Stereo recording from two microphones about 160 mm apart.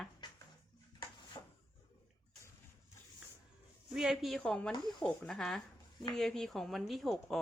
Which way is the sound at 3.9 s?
5° right (ahead or behind).